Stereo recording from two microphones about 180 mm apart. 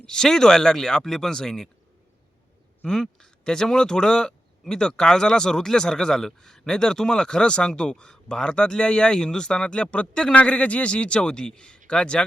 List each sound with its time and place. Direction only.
0.0 s speech: 5° left (ahead or behind)
2.8 s speech: 5° left (ahead or behind)